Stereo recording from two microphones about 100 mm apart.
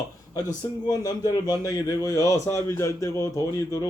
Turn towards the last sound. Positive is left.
turn(degrees=35)  # may be behind; listen again after turning